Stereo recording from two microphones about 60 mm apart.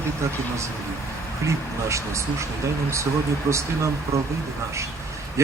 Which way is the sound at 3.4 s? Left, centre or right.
Right.